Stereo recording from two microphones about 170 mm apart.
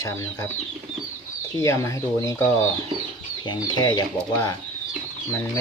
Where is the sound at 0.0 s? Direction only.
15° left (ahead or behind).